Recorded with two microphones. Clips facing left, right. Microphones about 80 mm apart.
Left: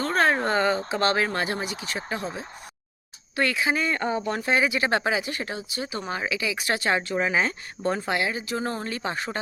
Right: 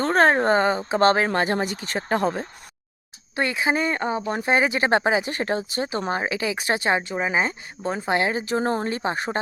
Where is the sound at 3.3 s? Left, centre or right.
Right; by 8.0 s centre.